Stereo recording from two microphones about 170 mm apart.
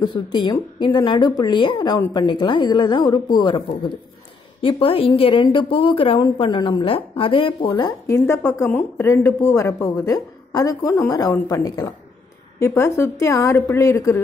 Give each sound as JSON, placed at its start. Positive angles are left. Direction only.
{"t": 0.0, "sound": "a woman's voice", "side_deg": 25}
{"t": 8.1, "sound": "a woman's voice", "side_deg": 15}